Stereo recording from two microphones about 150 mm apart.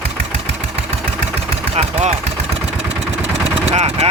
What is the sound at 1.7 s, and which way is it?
Speech, 45° right (ahead or behind).